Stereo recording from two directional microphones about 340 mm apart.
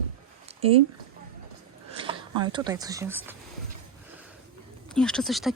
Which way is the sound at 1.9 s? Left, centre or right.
Centre.